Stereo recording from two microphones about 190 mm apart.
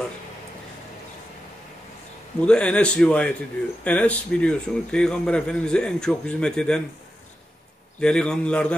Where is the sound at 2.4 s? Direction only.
5° left (ahead or behind).